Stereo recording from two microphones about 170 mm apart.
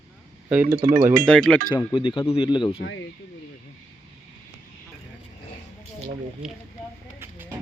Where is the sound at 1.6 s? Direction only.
25° left (ahead or behind).